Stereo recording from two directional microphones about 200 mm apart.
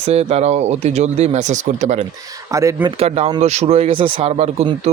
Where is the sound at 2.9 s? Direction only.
30° right (ahead or behind).